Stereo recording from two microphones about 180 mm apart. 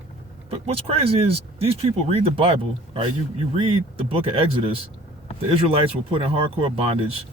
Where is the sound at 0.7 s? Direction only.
30° right (ahead or behind).